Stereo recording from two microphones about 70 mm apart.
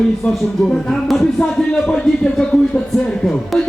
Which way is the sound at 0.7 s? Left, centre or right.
Centre.